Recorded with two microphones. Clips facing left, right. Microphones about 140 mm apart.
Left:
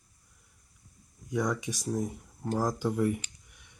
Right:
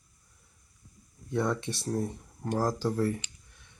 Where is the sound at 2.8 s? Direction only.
15° left (ahead or behind).